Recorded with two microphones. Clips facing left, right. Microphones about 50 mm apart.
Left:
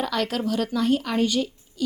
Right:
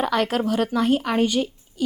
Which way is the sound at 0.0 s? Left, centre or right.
Right.